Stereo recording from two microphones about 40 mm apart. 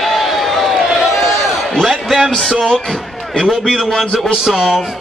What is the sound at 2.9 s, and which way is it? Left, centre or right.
A man's voice, centre.